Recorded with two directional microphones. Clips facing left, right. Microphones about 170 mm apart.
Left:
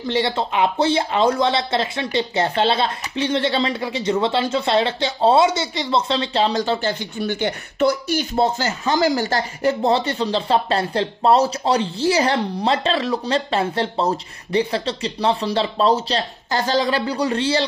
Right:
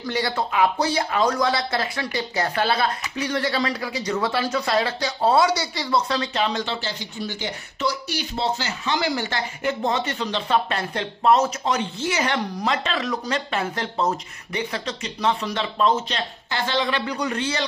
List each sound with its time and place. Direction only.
0.0 s speech: 25° left (ahead or behind)